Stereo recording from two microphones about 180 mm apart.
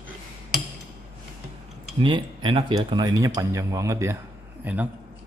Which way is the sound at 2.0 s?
30° right (ahead or behind).